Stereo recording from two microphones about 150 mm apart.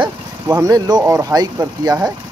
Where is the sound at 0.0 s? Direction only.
25° right (ahead or behind).